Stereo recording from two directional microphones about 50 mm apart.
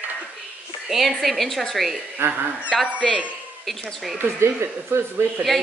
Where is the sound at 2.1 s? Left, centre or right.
Right.